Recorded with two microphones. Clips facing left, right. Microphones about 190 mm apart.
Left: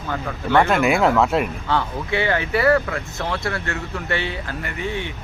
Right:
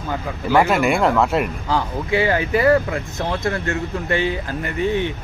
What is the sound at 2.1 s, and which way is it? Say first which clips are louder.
Speech: right 3 dB; 35° right (ahead or behind).